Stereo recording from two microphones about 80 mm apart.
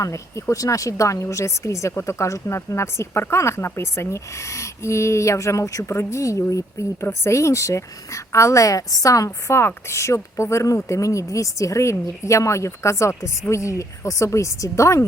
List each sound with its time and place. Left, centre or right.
0.0 s speech: left